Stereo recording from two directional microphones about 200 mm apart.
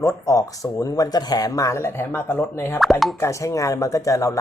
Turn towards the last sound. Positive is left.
turn(degrees=15)  # may be behind; listen again after turning